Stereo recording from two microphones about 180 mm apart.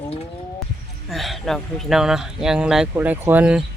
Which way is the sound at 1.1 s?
Centre (ahead or behind).